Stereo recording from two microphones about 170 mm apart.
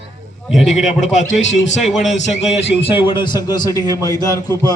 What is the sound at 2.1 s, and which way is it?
A man's voice, 40° left (ahead or behind).